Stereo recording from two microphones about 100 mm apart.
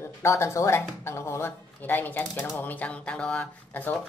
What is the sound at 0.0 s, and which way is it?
Speech, 30° left (ahead or behind).